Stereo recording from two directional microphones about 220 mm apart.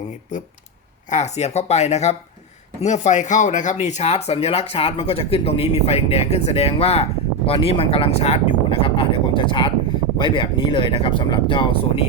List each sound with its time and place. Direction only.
1.1 s speech: 30° left (ahead or behind)